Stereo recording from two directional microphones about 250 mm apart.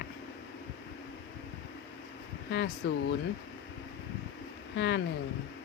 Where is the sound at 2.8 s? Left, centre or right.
Left.